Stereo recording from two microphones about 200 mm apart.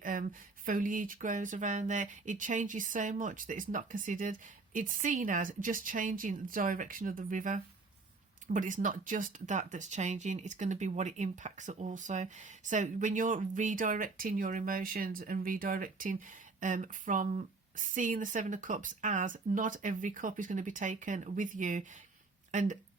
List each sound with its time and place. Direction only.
0.0 s speech: 45° right (ahead or behind)